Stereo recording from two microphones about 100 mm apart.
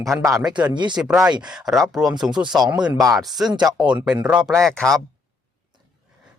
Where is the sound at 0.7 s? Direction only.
50° right (ahead or behind).